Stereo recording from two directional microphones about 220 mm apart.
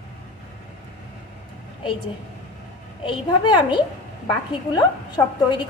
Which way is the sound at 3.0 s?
20° left (ahead or behind).